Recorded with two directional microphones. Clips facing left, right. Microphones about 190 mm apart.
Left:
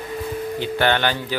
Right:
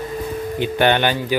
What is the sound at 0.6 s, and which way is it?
Speech, 15° right (ahead or behind).